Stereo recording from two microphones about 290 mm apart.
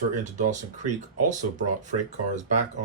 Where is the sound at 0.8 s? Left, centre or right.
Right.